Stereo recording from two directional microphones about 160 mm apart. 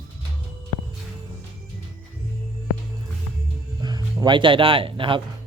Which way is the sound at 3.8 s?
25° right (ahead or behind).